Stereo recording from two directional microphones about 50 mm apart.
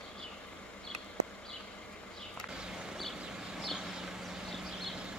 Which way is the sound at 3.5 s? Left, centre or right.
Centre.